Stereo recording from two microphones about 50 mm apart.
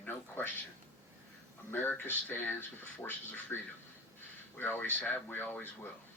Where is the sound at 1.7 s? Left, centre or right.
Left.